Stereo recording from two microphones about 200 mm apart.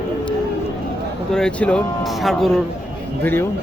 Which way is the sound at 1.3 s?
5° left (ahead or behind).